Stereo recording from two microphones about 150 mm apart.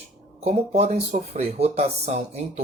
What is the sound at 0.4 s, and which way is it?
Speech, 50° right (ahead or behind).